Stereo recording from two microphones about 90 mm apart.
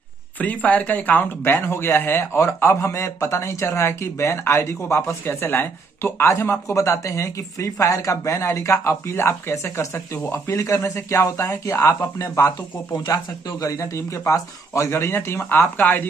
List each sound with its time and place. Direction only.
0.4 s speech: 15° left (ahead or behind)